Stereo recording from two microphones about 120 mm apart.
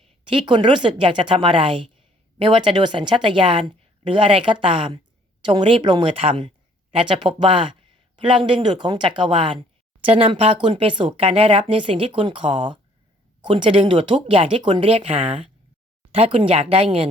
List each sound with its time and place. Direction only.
0.3 s speech: 40° right (ahead or behind)